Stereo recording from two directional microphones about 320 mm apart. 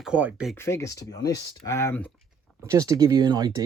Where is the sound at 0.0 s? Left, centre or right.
Centre.